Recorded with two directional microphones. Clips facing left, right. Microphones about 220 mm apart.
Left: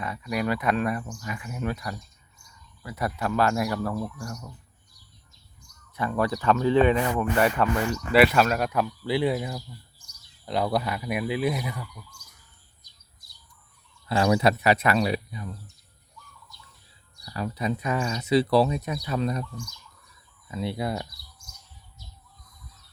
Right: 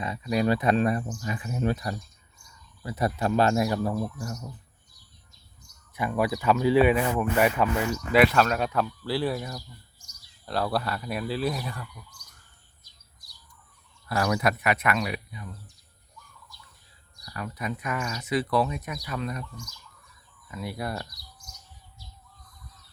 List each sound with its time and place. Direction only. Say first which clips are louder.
0.0 s speech: right 3 dB; 25° right (ahead or behind)
6.0 s speech: even; 10° right (ahead or behind)
8.1 s speech: left 1 dB; 5° left (ahead or behind)
14.1 s speech: left 4 dB; 25° left (ahead or behind)
17.2 s speech: left 5 dB; 30° left (ahead or behind)